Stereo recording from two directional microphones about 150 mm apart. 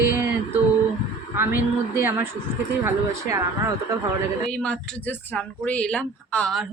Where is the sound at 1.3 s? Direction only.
15° right (ahead or behind).